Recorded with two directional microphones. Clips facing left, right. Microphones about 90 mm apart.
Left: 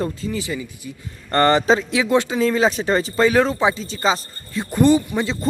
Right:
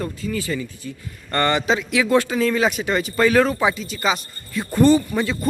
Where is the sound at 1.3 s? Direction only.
35° left (ahead or behind).